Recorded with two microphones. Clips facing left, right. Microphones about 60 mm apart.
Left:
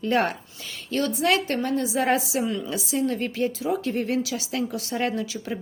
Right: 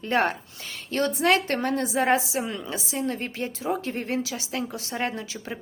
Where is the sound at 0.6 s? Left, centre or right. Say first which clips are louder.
Left 2 dB; right.